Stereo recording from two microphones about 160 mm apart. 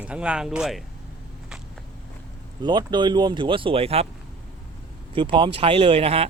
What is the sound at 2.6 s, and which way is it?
Speech, 30° right (ahead or behind).